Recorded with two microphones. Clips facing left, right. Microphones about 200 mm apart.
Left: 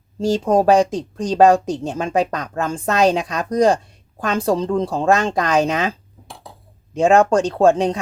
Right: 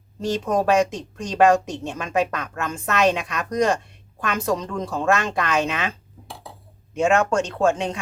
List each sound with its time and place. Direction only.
0.4 s speech: 30° left (ahead or behind)
6.9 s speech: 35° left (ahead or behind)